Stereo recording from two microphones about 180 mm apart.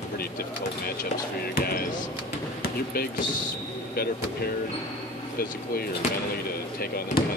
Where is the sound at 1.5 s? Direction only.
55° left (ahead or behind).